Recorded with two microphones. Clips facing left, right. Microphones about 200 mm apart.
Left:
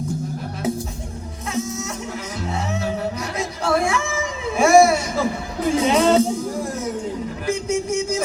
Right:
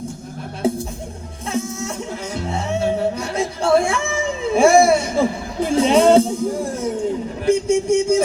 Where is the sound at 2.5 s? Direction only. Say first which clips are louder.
Right 4 dB; 30° right (ahead or behind).